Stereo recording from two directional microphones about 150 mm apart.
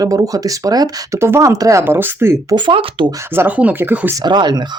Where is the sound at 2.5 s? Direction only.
35° right (ahead or behind).